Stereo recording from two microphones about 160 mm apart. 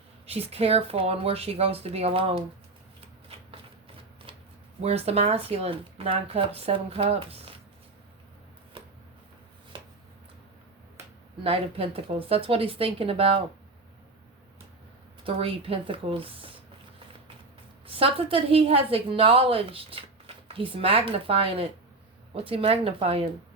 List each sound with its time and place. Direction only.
0.3 s a woman's voice: 40° right (ahead or behind)
4.8 s a woman's voice: 40° right (ahead or behind)
9.7 s a sound: 30° right (ahead or behind)
11.4 s a woman's voice: 35° right (ahead or behind)
15.2 s a woman's voice: 35° right (ahead or behind)
17.8 s a woman's voice: 35° right (ahead or behind)